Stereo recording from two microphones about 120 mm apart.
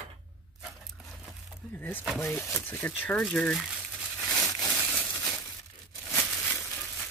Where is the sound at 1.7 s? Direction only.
15° left (ahead or behind).